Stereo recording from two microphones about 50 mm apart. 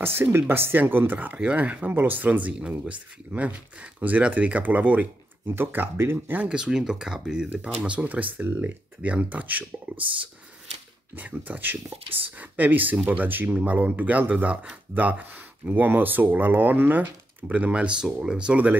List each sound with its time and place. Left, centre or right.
0.0 s speech: right
1.4 s speech: right
1.9 s speech: right
5.5 s speech: right
5.9 s speech: right
6.5 s speech: centre
7.8 s speech: right
11.1 s speech: right
17.7 s speech: centre